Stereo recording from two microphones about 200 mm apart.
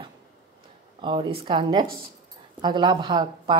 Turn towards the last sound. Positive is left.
turn(degrees=-20)  # may be behind; listen again after turning